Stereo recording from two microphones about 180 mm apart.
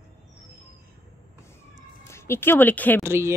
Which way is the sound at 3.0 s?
15° right (ahead or behind).